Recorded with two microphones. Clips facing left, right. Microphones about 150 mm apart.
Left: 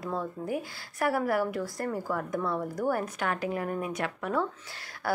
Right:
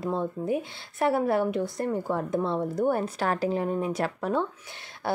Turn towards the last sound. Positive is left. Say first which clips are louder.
# right 1 dB
turn(degrees=-25)  # may be behind; listen again after turning